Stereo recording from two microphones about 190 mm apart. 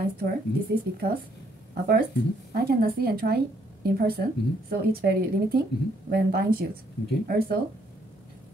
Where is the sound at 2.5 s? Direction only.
55° right (ahead or behind).